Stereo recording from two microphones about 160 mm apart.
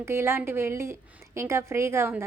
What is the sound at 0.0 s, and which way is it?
A woman's voice, 15° right (ahead or behind).